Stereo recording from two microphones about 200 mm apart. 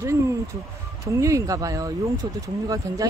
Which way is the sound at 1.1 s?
15° right (ahead or behind).